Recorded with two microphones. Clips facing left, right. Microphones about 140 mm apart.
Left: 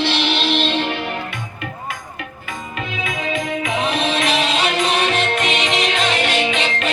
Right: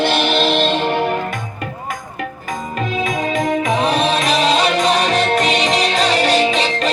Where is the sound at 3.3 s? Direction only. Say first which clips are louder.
Right 4 dB; 40° right (ahead or behind).